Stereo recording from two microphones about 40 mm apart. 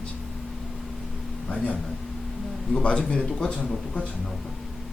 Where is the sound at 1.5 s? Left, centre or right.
Left.